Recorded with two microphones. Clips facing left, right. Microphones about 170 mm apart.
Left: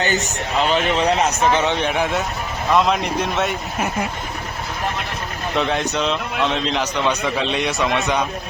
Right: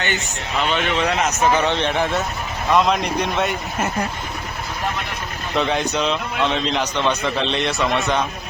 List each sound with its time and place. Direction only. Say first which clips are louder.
0.0 s speech: left 4 dB; 40° left (ahead or behind)
1.4 s a man's voice: even; 10° right (ahead or behind)
1.6 s a man's voice: even; 10° left (ahead or behind)
5.5 s a man's voice: right 1 dB; centre (ahead or behind); by 8.1 s 20° left (ahead or behind)